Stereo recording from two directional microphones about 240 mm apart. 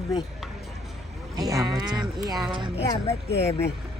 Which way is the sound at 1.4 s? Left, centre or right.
Centre.